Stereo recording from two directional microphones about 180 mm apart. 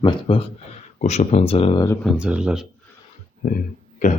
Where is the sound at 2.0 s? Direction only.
5° right (ahead or behind).